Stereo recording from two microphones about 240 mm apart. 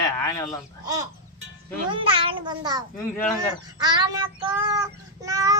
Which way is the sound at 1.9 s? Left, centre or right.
Right.